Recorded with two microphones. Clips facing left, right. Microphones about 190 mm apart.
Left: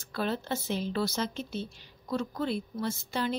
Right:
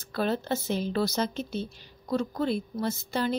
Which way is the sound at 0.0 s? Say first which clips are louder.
Right 4 dB; 40° right (ahead or behind).